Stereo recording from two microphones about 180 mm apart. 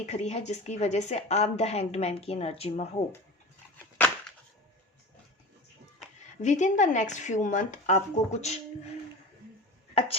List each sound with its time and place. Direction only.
0.0 s a woman's voice: 35° left (ahead or behind)
6.4 s speech: 40° left (ahead or behind)
9.9 s speech: 30° left (ahead or behind)